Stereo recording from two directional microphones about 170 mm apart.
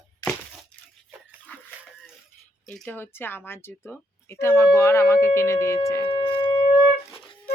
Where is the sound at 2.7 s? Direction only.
5° left (ahead or behind).